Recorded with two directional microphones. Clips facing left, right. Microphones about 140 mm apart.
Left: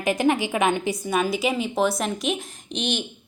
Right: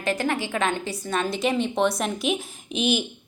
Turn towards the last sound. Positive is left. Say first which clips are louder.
# right 4 dB
turn(degrees=-5)  # may be behind; listen again after turning